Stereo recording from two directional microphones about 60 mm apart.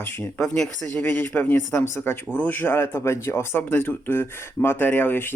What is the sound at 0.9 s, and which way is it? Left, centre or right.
Speech, left.